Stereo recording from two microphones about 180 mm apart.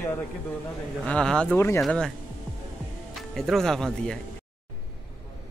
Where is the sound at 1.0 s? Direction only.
5° left (ahead or behind).